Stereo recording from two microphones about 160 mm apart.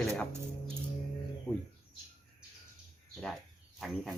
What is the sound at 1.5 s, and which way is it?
Speech, 15° left (ahead or behind).